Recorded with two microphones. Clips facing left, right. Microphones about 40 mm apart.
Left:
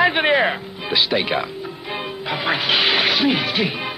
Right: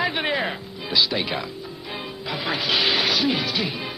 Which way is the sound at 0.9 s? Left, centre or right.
Left.